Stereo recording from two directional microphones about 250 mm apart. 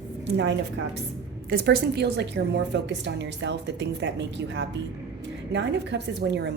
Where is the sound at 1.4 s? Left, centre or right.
Right.